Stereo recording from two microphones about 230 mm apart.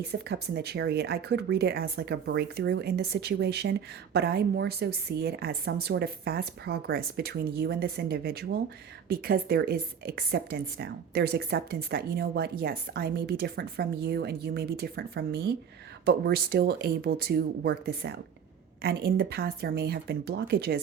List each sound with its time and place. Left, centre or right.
0.1 s speech: right